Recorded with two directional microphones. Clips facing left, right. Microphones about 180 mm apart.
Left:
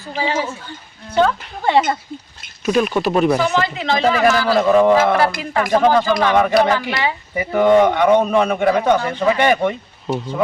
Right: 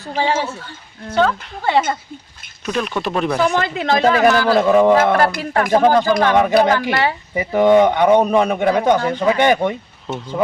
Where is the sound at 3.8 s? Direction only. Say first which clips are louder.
Right 3 dB; 50° right (ahead or behind).